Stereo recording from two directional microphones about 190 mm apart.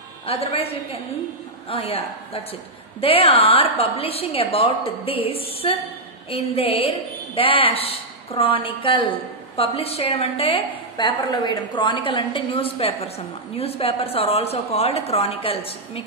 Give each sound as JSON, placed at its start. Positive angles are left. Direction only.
{"t": 0.3, "sound": "a woman's voice", "side_deg": 30}